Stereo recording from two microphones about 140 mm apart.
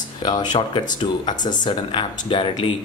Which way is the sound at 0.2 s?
30° left (ahead or behind).